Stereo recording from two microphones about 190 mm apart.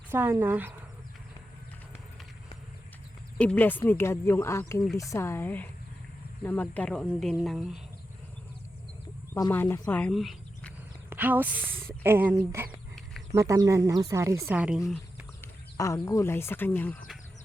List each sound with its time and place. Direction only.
0.1 s speech: 10° right (ahead or behind)
3.3 s speech: 5° left (ahead or behind)
9.3 s speech: 10° left (ahead or behind)
11.1 s speech: 10° right (ahead or behind)
15.8 s speech: 15° left (ahead or behind)